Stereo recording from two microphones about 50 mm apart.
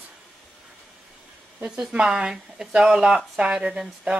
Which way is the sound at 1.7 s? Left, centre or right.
Centre.